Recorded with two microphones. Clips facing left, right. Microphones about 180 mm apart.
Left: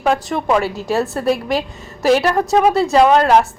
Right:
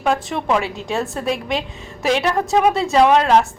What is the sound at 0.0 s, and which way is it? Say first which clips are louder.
A woman's voice: left 2 dB; centre (ahead or behind).